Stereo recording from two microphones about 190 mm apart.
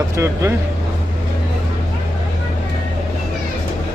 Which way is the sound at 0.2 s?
15° right (ahead or behind).